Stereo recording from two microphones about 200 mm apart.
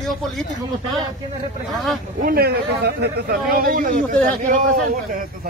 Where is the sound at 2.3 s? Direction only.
50° right (ahead or behind).